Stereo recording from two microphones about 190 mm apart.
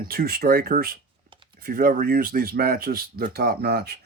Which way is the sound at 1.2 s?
25° right (ahead or behind).